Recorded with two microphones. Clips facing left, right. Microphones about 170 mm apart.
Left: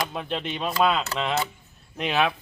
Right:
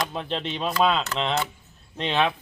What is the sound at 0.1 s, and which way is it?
Speech, 5° left (ahead or behind).